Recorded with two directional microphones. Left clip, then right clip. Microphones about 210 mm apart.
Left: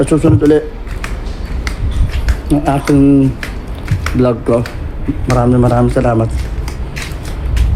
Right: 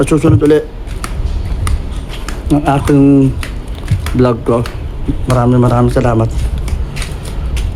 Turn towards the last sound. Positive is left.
turn(degrees=-5)  # may be behind; listen again after turning